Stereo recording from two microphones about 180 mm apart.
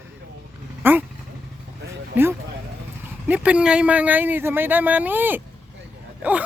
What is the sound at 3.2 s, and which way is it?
Speech, 10° right (ahead or behind).